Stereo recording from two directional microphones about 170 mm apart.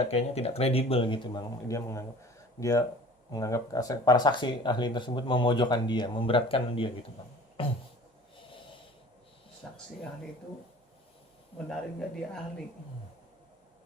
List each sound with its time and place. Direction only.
0.0 s speech: 40° left (ahead or behind)
9.6 s a sound: centre (ahead or behind)
11.7 s speech: 5° left (ahead or behind)